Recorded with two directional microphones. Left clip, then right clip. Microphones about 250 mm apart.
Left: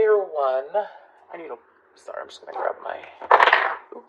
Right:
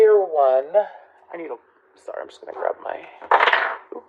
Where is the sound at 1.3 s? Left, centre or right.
Right.